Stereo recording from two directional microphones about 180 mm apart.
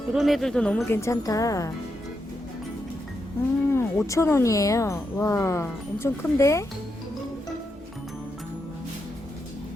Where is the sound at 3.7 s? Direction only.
15° left (ahead or behind).